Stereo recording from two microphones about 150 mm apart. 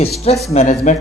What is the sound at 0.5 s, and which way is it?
Speech, 55° left (ahead or behind).